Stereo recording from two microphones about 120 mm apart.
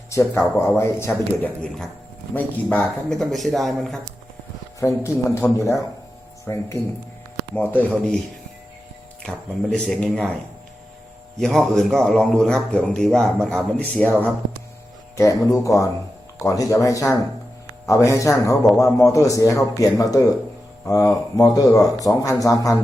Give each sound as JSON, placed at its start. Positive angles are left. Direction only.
{"t": 0.1, "sound": "a man's voice", "side_deg": 25}
{"t": 4.8, "sound": "a man's voice", "side_deg": 25}
{"t": 7.5, "sound": "speech", "side_deg": 15}
{"t": 9.2, "sound": "speech", "side_deg": 5}
{"t": 11.3, "sound": "a man's voice", "side_deg": 5}
{"t": 15.1, "sound": "a man's voice", "side_deg": 25}